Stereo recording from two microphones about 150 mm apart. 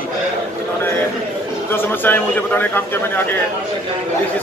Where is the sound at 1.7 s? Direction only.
15° left (ahead or behind).